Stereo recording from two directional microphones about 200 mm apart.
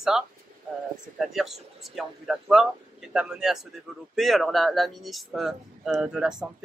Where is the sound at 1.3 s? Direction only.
Centre (ahead or behind).